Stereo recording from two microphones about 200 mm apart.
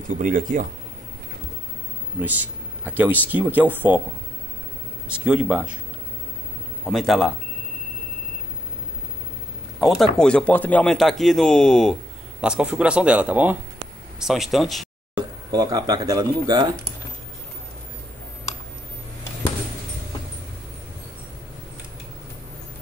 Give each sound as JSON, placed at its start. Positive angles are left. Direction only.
{"t": 0.1, "sound": "speech", "side_deg": -45}
{"t": 2.2, "sound": "speech", "side_deg": -10}
{"t": 5.1, "sound": "a man's voice", "side_deg": -5}
{"t": 6.9, "sound": "a man's voice", "side_deg": 0}
{"t": 9.8, "sound": "a man's voice", "side_deg": 0}
{"t": 15.1, "sound": "speech", "side_deg": -20}